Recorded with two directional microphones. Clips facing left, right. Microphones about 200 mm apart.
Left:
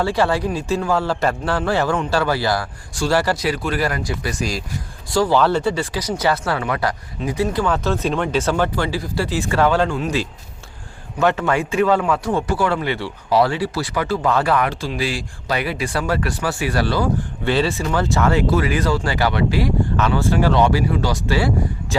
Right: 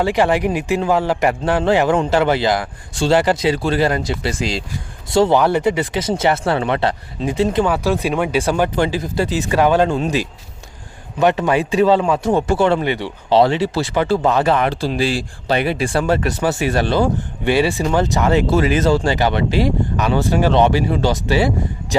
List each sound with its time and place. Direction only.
0.0 s speech: 20° right (ahead or behind)
7.7 s speech: 10° right (ahead or behind)